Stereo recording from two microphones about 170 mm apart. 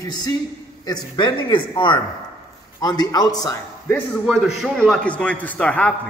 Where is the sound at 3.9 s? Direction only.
Centre (ahead or behind).